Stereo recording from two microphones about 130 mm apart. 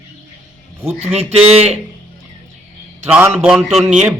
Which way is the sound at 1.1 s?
50° right (ahead or behind).